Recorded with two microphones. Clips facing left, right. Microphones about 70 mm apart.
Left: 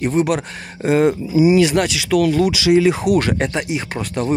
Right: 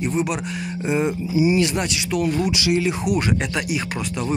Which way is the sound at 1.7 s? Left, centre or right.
Left.